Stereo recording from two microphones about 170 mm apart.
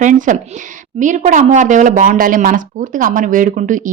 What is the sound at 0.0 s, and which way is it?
A woman's voice, 45° right (ahead or behind).